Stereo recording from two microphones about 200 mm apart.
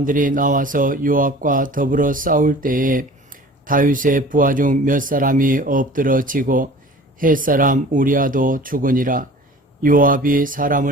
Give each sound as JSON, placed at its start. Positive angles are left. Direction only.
{"t": 0.0, "sound": "speech", "side_deg": -40}